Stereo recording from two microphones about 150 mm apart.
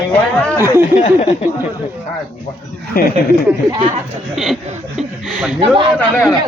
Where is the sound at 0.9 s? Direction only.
50° left (ahead or behind).